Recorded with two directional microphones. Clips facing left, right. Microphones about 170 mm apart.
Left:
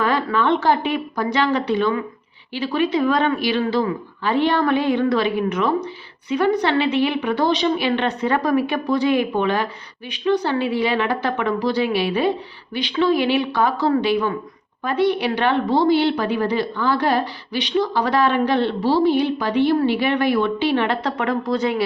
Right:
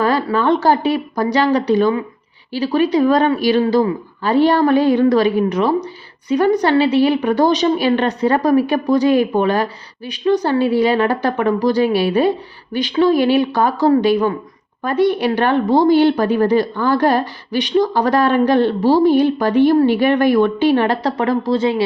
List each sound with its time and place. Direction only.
0.0 s a woman's voice: 40° right (ahead or behind)